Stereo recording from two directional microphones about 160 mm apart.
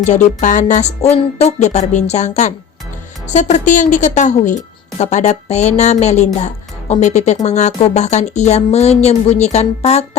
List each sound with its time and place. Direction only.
0.0 s speech: 50° left (ahead or behind)